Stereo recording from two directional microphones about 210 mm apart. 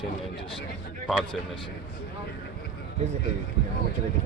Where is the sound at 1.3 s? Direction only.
25° left (ahead or behind).